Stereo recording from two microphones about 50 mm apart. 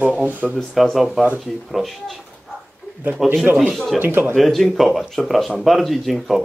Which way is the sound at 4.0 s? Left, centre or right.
Right.